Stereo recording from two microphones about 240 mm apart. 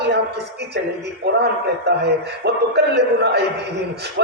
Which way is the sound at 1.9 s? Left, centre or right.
Right.